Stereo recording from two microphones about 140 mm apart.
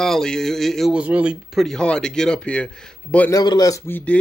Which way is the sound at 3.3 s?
30° left (ahead or behind).